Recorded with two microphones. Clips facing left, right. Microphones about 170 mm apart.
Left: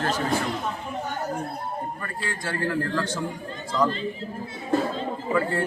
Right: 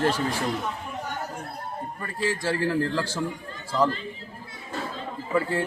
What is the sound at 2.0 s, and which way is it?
A man's voice, 20° right (ahead or behind).